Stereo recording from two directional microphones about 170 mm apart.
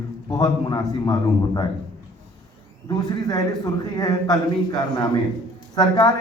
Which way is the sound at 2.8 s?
25° left (ahead or behind).